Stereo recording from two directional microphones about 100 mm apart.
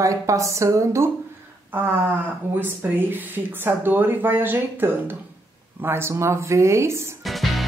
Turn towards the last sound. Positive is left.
turn(degrees=0)  # may be behind; listen again after turning